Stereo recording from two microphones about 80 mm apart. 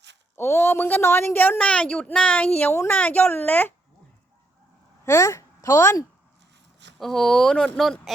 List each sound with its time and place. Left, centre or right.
0.3 s a woman's voice: left
5.0 s speech: left
7.0 s speech: centre